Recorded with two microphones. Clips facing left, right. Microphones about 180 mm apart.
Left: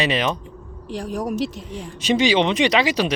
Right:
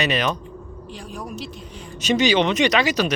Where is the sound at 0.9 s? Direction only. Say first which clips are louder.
Left 9 dB; 85° left.